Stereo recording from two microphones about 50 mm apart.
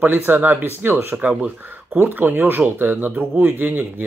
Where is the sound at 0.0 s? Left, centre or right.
Right.